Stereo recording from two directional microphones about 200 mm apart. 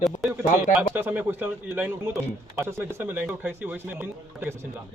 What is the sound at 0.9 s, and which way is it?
Speech, 10° right (ahead or behind).